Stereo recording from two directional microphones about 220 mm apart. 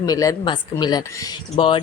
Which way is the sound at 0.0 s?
15° left (ahead or behind).